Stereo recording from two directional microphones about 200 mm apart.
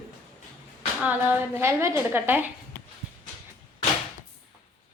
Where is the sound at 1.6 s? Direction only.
15° right (ahead or behind).